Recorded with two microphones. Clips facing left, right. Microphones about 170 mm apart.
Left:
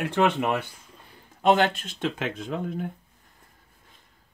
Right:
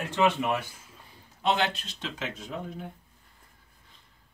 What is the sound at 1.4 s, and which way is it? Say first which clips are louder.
Speech: left 6 dB; 50° left (ahead or behind).